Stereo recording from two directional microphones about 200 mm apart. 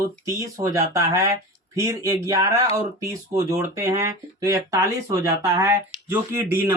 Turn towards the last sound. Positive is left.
turn(degrees=-10)  # may be behind; listen again after turning